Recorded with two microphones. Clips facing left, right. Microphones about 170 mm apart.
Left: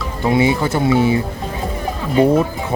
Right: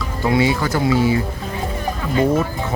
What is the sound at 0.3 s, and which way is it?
Speech, 20° left (ahead or behind).